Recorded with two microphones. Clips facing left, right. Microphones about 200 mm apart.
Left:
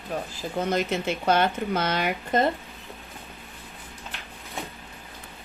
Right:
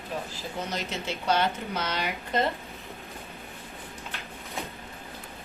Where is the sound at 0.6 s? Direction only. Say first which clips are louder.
Left 9 dB; 55° left (ahead or behind).